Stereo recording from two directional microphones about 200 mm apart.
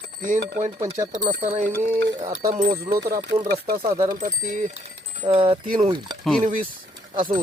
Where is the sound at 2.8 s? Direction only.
20° right (ahead or behind).